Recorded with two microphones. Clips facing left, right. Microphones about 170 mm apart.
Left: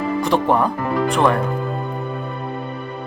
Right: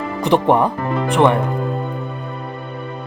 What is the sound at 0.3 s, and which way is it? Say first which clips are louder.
Speech: right 4 dB; 25° right (ahead or behind).